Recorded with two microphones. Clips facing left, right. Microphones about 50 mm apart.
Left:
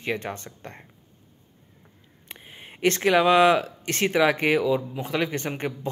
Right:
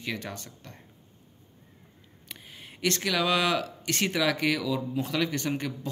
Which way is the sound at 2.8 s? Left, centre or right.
Left.